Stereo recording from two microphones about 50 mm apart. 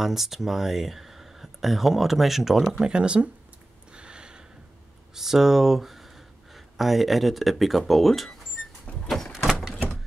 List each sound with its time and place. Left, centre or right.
0.0 s speech: centre
2.7 s speech: centre
3.9 s a sound: centre
5.1 s speech: centre
9.1 s door: centre